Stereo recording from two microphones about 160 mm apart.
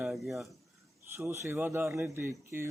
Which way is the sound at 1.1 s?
15° right (ahead or behind).